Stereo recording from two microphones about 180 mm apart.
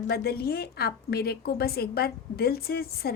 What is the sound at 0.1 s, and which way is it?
A woman's voice, 60° left (ahead or behind).